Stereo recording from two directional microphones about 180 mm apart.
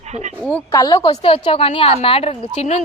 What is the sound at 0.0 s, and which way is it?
Speech, 40° right (ahead or behind).